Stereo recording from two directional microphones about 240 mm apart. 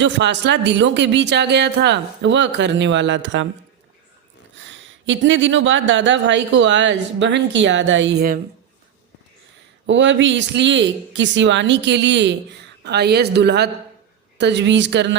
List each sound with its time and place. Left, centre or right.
0.0 s speech: right
4.7 s speech: right
9.8 s speech: right